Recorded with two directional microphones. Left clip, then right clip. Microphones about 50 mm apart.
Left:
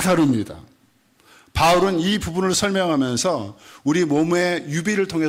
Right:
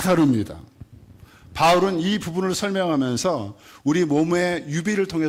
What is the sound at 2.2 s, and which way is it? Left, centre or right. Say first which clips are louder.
Speech: left 3 dB; centre.